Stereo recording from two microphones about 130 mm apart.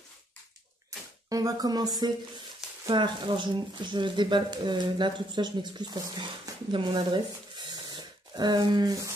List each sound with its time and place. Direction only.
1.3 s speech: 30° right (ahead or behind)